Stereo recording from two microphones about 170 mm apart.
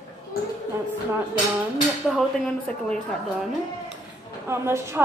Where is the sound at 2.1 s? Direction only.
5° left (ahead or behind).